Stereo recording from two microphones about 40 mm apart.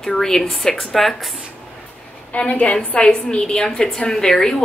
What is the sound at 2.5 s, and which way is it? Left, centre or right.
Speech, left.